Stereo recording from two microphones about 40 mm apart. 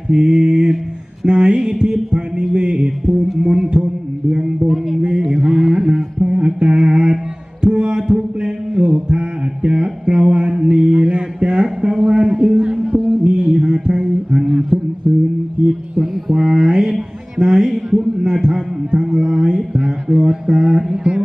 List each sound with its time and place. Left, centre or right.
0.1 s a sound: right
3.4 s mantra: centre
4.6 s music: centre
5.0 s mantra: right
7.6 s music: right
8.4 s mantra: right
12.1 s a sound: right
15.0 s guitar: centre
16.3 s mantra: centre
17.4 s a sound: centre